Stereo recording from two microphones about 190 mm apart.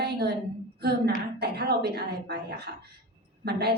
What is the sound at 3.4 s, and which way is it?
Speech, 60° right (ahead or behind).